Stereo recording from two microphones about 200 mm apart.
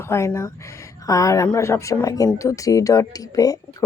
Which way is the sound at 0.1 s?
15° left (ahead or behind).